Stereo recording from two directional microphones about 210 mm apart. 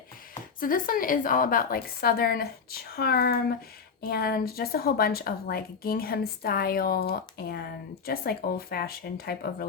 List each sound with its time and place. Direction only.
0.6 s speech: 40° left (ahead or behind)